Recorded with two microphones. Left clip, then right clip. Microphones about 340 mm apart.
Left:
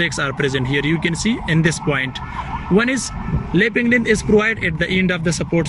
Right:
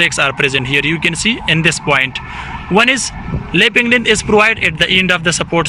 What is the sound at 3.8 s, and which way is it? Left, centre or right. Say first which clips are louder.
Speech: right 5 dB; right.